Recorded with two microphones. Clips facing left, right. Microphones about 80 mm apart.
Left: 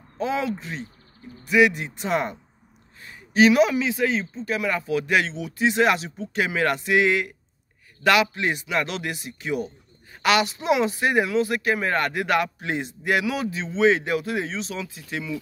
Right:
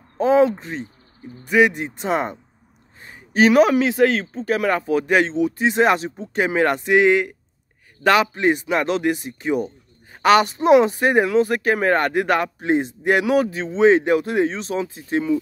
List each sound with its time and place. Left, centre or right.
0.2 s speech: right